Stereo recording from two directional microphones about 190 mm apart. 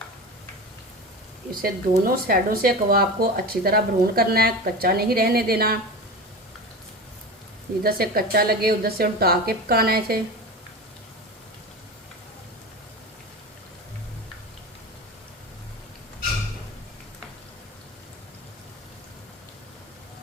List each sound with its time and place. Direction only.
1.6 s speech: 50° right (ahead or behind)
7.9 s speech: 55° right (ahead or behind)